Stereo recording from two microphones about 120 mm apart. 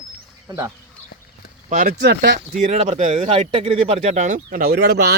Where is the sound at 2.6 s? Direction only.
90° right; by 3.5 s 60° right (ahead or behind).